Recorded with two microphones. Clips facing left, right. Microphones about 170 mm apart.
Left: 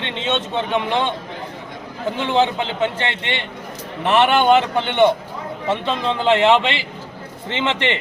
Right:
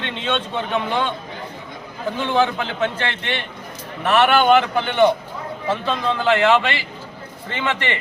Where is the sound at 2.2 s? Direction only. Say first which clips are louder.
Left 1 dB; 20° left (ahead or behind).